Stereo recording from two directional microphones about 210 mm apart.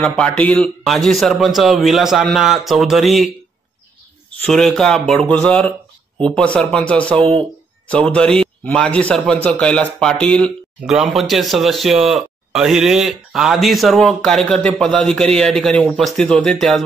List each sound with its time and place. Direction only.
0.0 s speech: 5° left (ahead or behind)
4.5 s speech: centre (ahead or behind)
7.2 s speech: 25° right (ahead or behind)
7.9 s speech: 5° left (ahead or behind)